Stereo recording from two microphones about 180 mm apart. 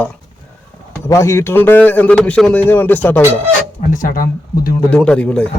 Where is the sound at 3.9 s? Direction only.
50° left (ahead or behind).